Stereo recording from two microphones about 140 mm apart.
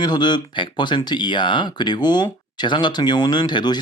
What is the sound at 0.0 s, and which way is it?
Speech, 30° left (ahead or behind).